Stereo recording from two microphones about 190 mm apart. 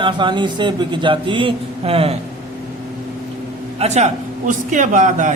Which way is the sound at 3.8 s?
35° right (ahead or behind).